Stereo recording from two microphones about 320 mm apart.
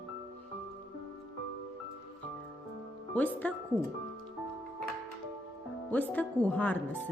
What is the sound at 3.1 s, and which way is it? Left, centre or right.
Speech, centre.